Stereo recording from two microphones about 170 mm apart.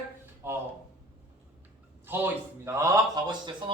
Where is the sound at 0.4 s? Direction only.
15° right (ahead or behind).